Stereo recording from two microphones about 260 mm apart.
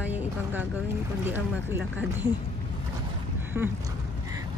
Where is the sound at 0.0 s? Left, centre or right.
Centre.